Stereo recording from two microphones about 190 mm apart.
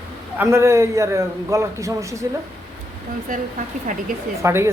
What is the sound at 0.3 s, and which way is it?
A man's voice, 15° right (ahead or behind).